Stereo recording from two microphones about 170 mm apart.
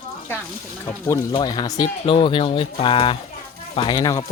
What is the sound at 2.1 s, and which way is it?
Speech, 30° left (ahead or behind).